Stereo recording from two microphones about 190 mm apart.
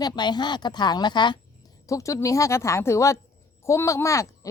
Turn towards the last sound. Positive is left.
turn(degrees=15)  # may be behind; listen again after turning